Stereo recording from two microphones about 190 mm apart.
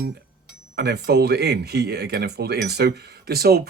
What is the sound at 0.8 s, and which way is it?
Speech, 60° right (ahead or behind).